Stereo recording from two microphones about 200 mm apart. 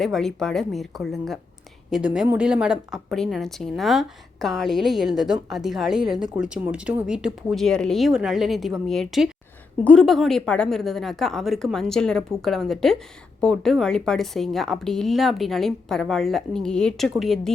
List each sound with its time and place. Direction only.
0.0 s a woman's voice: centre (ahead or behind)